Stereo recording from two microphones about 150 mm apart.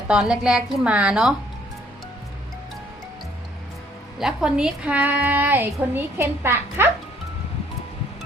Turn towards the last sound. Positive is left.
turn(degrees=-15)  # may be behind; listen again after turning